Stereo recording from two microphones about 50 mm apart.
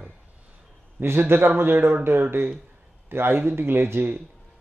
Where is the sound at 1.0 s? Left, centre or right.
Right.